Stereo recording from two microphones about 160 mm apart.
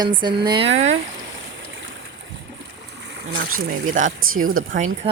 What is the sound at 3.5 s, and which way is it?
A woman's voice, 55° right (ahead or behind).